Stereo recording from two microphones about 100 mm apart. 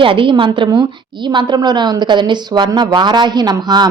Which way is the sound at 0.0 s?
60° right (ahead or behind).